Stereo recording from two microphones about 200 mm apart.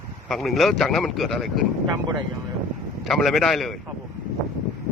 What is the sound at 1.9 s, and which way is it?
Speech, 20° right (ahead or behind).